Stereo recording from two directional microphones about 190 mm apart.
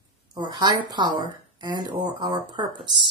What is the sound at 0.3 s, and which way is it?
Speech, 20° right (ahead or behind).